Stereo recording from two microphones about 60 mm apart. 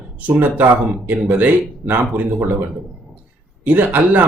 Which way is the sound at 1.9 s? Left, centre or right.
Right.